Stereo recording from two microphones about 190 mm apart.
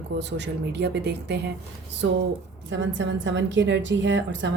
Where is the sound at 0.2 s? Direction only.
65° right (ahead or behind).